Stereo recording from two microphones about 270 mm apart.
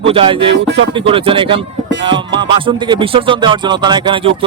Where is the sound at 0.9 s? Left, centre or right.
Centre.